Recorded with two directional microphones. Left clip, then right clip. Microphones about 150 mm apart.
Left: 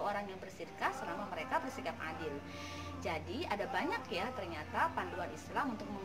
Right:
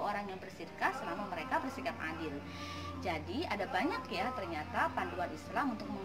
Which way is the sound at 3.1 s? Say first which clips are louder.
Right 1 dB; 15° left (ahead or behind).